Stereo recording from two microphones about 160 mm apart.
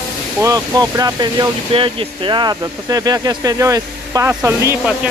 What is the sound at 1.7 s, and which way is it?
Speech, 35° right (ahead or behind).